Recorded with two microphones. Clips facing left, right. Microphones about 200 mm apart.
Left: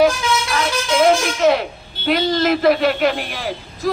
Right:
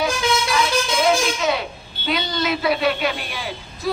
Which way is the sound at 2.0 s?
50° left (ahead or behind).